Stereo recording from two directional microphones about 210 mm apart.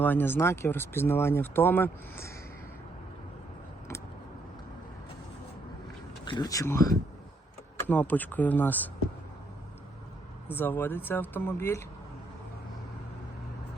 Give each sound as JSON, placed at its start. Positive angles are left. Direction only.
{"t": 0.0, "sound": "speech", "side_deg": 10}
{"t": 6.2, "sound": "speech", "side_deg": 20}
{"t": 10.5, "sound": "speech", "side_deg": 10}